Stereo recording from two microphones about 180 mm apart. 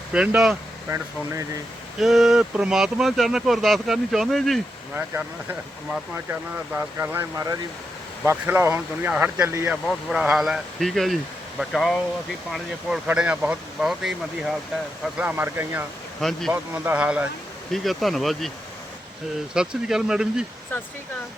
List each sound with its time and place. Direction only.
0.1 s speech: 5° right (ahead or behind)
2.0 s speech: centre (ahead or behind)
4.9 s speech: 10° right (ahead or behind)
9.8 s speech: centre (ahead or behind)
19.5 s speech: 5° right (ahead or behind)